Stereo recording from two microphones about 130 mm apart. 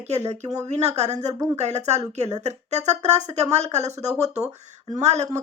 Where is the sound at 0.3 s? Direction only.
60° right (ahead or behind).